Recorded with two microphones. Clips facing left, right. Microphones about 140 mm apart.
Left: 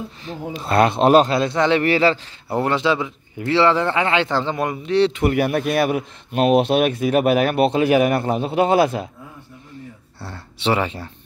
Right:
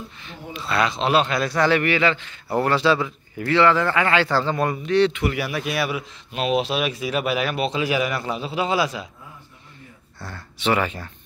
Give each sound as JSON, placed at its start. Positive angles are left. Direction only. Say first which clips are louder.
{"t": 0.2, "sound": "speech", "louder": "left 7 dB", "side_deg": 40}
{"t": 1.3, "sound": "speech", "louder": "left 2 dB", "side_deg": 25}
{"t": 1.9, "sound": "a man's voice", "louder": "left 4 dB", "side_deg": 35}
{"t": 2.5, "sound": "speech", "louder": "even", "side_deg": 20}
{"t": 5.2, "sound": "speech", "louder": "left 6 dB", "side_deg": 50}
{"t": 10.2, "sound": "speech", "louder": "left 2 dB", "side_deg": 25}